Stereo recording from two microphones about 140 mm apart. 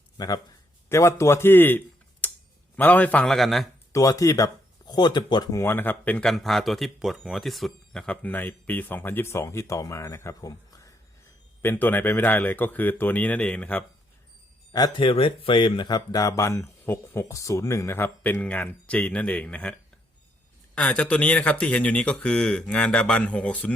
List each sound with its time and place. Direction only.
0.2 s speech: 30° left (ahead or behind)
2.2 s a sound: 10° left (ahead or behind)
2.7 s speech: 10° left (ahead or behind)
3.9 s speech: 25° left (ahead or behind)
14.9 s speech: 40° left (ahead or behind); by 19.7 s 10° left (ahead or behind)
20.7 s speech: 10° left (ahead or behind)